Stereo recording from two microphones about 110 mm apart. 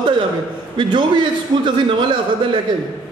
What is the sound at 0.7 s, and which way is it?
A man's voice, 45° right (ahead or behind).